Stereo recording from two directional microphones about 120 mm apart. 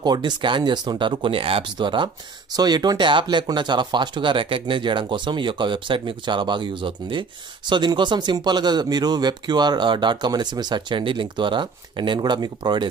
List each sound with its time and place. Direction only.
0.0 s speech: 35° right (ahead or behind)